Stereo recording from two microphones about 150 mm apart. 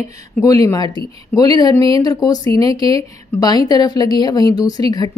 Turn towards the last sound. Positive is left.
turn(degrees=25)  # may be behind; listen again after turning